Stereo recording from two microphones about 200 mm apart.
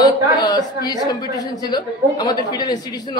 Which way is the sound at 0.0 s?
20° left (ahead or behind).